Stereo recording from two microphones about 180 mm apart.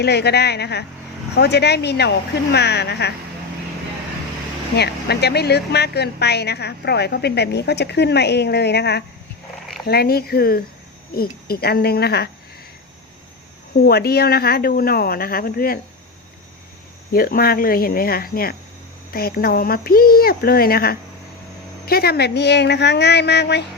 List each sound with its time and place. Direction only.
0.0 s a woman's voice: 65° left (ahead or behind)
4.8 s a woman's voice: 65° left (ahead or behind)
13.7 s a woman's voice: 60° left (ahead or behind)
17.1 s a woman's voice: 55° left (ahead or behind)